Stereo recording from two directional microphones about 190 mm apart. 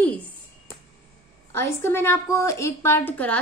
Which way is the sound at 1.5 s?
10° left (ahead or behind).